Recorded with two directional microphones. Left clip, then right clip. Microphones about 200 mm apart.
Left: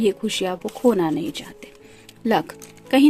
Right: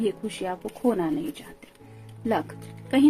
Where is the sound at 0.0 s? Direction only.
50° left (ahead or behind).